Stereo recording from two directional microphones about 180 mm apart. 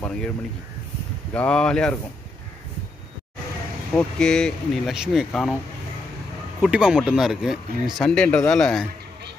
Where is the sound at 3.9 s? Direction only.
5° left (ahead or behind).